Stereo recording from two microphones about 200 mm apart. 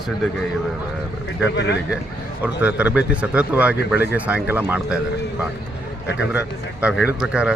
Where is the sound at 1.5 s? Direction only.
60° left (ahead or behind).